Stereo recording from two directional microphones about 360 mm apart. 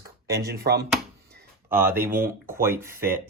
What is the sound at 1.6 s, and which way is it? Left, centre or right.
Speech, centre.